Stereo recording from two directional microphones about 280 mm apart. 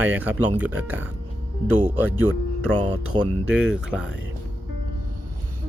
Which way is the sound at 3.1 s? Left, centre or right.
Centre.